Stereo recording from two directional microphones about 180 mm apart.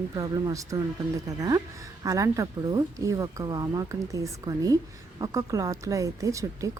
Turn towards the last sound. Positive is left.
turn(degrees=-15)  # may be behind; listen again after turning